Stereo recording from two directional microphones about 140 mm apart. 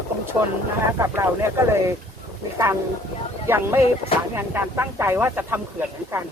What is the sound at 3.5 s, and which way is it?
Speech, 15° right (ahead or behind).